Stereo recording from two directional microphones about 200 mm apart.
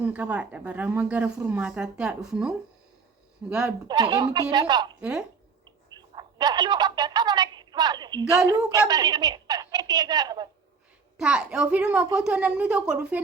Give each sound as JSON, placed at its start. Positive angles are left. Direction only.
{"t": 0.0, "sound": "speech", "side_deg": -5}
{"t": 3.8, "sound": "speech", "side_deg": -20}
{"t": 4.9, "sound": "speech", "side_deg": -5}
{"t": 5.6, "sound": "a sound", "side_deg": -20}
{"t": 8.4, "sound": "a woman's voice", "side_deg": -20}
{"t": 11.2, "sound": "speech", "side_deg": -5}